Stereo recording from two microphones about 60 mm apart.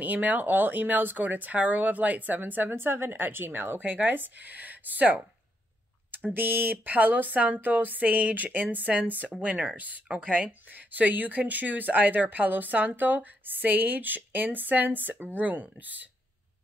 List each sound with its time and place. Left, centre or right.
0.0 s speech: right